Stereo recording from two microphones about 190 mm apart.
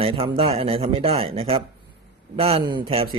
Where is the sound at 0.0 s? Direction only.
30° right (ahead or behind).